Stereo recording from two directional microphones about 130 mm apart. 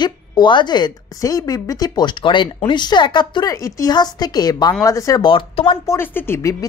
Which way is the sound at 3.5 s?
25° left (ahead or behind).